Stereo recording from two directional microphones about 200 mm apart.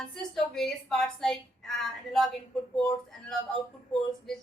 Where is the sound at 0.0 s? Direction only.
Centre (ahead or behind).